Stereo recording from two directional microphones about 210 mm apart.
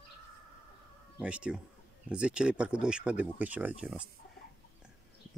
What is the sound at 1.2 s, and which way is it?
Speech, 5° right (ahead or behind).